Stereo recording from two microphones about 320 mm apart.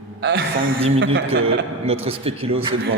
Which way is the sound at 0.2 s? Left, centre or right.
Right.